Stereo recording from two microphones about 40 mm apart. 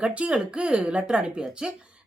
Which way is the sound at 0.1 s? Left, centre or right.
Right.